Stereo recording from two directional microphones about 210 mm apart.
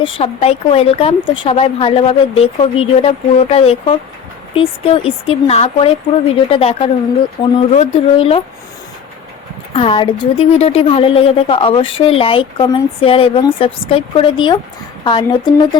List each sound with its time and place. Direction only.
0.2 s a woman's voice: 30° left (ahead or behind)
9.7 s a woman's voice: 25° left (ahead or behind)